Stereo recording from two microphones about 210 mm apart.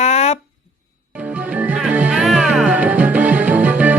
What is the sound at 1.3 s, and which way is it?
Music, 5° right (ahead or behind).